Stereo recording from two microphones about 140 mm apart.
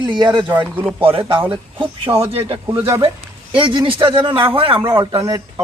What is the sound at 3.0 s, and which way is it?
A man's voice, 35° right (ahead or behind).